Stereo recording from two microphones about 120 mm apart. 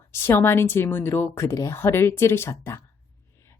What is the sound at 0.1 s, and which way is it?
Speech, 20° left (ahead or behind).